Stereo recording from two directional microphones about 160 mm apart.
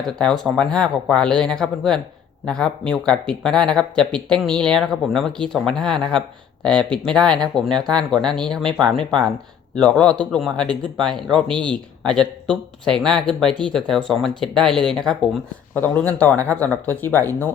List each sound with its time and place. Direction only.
0.2 s speech: 5° left (ahead or behind)